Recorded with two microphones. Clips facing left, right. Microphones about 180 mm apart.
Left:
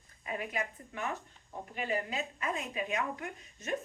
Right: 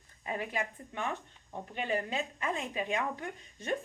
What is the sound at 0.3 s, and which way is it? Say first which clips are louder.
A woman's voice: right 1 dB; 30° right (ahead or behind).